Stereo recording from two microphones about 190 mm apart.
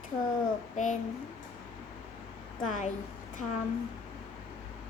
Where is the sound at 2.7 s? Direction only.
40° left (ahead or behind).